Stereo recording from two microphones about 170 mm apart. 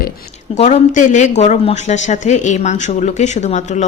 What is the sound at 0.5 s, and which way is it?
Speech, 40° left (ahead or behind).